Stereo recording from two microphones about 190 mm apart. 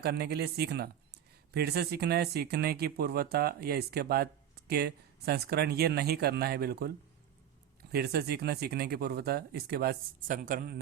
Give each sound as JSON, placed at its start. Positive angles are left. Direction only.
{"t": 0.0, "sound": "speech", "side_deg": -55}
{"t": 7.9, "sound": "speech", "side_deg": -60}